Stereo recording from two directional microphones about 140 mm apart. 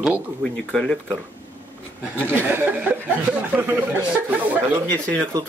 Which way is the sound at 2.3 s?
15° right (ahead or behind).